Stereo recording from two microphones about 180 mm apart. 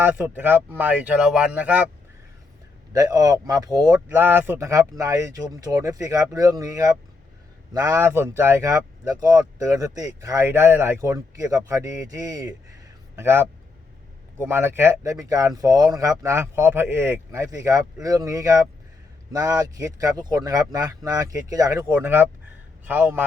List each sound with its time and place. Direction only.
0.0 s speech: 10° right (ahead or behind)
2.9 s speech: 20° right (ahead or behind)